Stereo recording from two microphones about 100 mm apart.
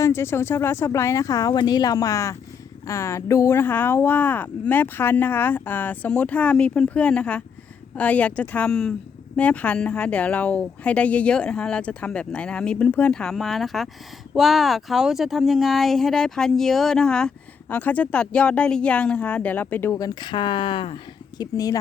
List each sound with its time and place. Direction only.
0.0 s a woman's voice: 25° left (ahead or behind)
20.0 s speech: 45° left (ahead or behind); by 21.0 s 60° left (ahead or behind)
21.3 s speech: 40° left (ahead or behind)